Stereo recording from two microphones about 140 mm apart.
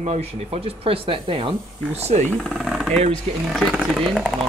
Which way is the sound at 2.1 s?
55° right (ahead or behind).